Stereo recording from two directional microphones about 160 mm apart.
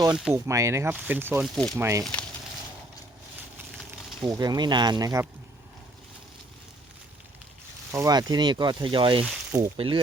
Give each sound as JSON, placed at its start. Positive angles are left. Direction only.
{"t": 0.4, "sound": "speech", "side_deg": -20}
{"t": 1.5, "sound": "speech", "side_deg": 5}
{"t": 1.8, "sound": "speech", "side_deg": -20}
{"t": 4.2, "sound": "speech", "side_deg": -25}
{"t": 7.9, "sound": "speech", "side_deg": -25}
{"t": 9.2, "sound": "speech", "side_deg": -15}
{"t": 9.7, "sound": "speech", "side_deg": -35}